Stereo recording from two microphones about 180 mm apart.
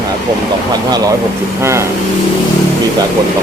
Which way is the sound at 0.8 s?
20° right (ahead or behind).